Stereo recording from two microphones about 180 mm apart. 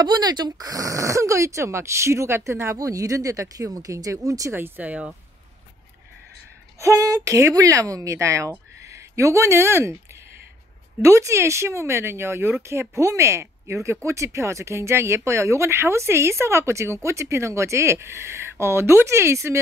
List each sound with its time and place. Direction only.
0.0 s speech: 25° right (ahead or behind); by 5.1 s 10° right (ahead or behind)
6.8 s speech: 15° right (ahead or behind)
11.0 s speech: 15° right (ahead or behind)